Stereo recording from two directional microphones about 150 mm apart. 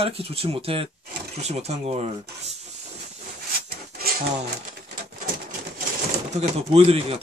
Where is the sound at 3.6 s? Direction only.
90° right.